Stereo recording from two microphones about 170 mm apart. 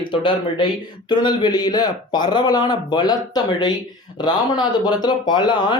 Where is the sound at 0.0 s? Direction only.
30° left (ahead or behind).